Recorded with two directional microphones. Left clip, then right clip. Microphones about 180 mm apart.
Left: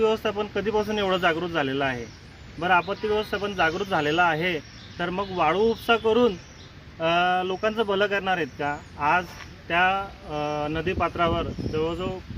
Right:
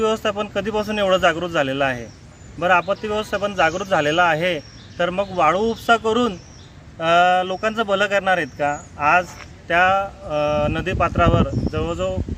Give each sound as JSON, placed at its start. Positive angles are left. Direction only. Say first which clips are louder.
{"t": 0.0, "sound": "speech", "louder": "right 3 dB", "side_deg": -20}